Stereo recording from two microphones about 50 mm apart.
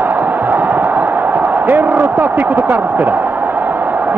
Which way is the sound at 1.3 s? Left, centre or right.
Right.